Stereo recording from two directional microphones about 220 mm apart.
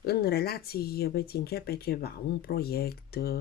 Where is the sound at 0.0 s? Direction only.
45° left (ahead or behind).